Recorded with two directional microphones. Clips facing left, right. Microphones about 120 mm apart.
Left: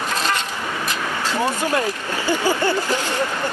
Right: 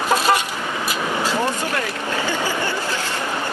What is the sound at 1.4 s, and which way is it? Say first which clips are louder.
Speech: left 2 dB; 15° left (ahead or behind).